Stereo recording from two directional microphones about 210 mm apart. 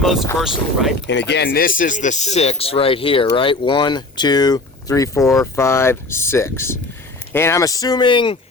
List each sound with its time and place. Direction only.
0.0 s speech: centre (ahead or behind)
1.0 s speech: 55° left (ahead or behind); by 8.4 s 25° left (ahead or behind)